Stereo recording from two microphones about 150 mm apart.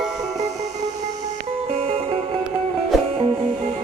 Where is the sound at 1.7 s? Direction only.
45° right (ahead or behind).